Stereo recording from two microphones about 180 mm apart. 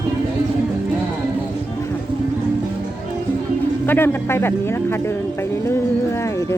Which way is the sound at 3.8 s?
10° left (ahead or behind).